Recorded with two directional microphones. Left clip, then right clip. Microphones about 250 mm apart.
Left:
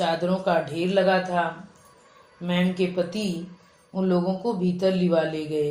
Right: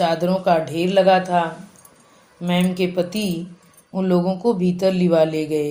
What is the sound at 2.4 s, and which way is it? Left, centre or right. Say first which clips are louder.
Speech: right 4 dB; right.